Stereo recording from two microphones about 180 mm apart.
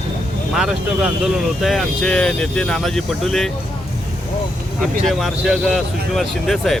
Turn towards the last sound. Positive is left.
turn(degrees=0)  # may be behind; listen again after turning